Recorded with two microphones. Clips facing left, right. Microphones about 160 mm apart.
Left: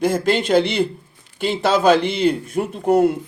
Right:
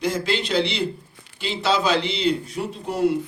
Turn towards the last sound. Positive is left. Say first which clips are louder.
# left 6 dB
turn(degrees=50)  # may be behind; listen again after turning